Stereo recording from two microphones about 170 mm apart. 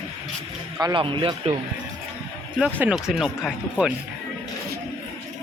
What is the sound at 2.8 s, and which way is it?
Speech, 5° right (ahead or behind).